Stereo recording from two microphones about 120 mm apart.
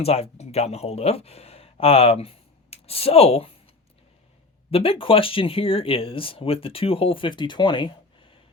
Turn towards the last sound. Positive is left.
turn(degrees=40)  # may be behind; listen again after turning